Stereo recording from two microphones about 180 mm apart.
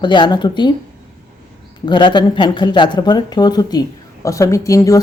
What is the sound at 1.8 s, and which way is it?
Speech, 25° left (ahead or behind).